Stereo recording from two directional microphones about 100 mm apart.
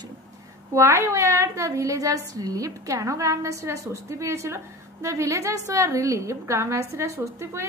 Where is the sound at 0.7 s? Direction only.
30° right (ahead or behind).